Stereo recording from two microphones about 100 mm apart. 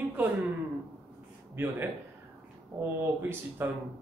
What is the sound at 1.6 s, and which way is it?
Speech, 20° right (ahead or behind).